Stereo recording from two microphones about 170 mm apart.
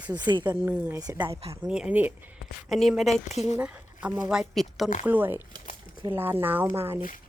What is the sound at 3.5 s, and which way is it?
Speech, 10° right (ahead or behind).